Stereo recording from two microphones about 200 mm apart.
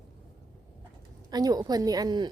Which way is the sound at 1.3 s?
20° right (ahead or behind).